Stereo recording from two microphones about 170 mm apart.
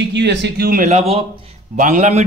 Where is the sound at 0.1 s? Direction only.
90° right; by 0.8 s 65° right (ahead or behind).